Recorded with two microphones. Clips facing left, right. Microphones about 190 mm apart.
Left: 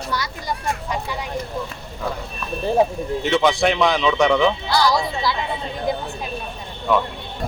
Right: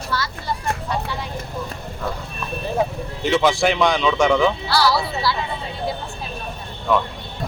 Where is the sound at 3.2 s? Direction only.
Centre (ahead or behind).